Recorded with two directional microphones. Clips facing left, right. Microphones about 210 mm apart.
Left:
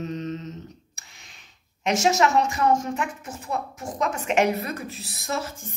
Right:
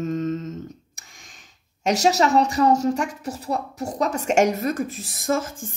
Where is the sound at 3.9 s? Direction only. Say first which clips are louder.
Right 3 dB; 40° right (ahead or behind).